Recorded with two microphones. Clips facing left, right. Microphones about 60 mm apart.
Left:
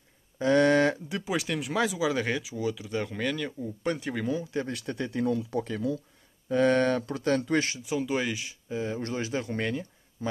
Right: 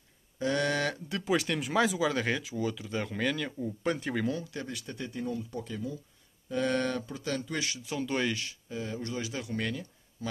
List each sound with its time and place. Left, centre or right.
0.4 s a sound: left
1.0 s speech: centre
1.3 s speech: centre
4.6 s speech: left
6.5 s speech: left
7.8 s speech: centre
8.6 s speech: left
9.0 s speech: left